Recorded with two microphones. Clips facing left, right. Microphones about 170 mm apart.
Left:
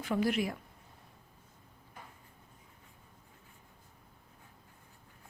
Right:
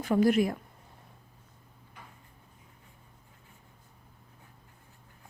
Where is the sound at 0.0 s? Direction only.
45° right (ahead or behind).